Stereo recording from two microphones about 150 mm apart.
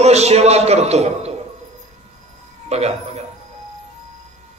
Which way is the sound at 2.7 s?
45° right (ahead or behind).